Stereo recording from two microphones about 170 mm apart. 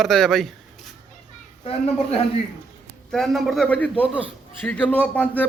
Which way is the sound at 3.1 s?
Centre (ahead or behind).